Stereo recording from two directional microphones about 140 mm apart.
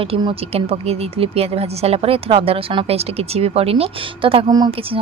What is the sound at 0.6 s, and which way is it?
Speech, 45° right (ahead or behind).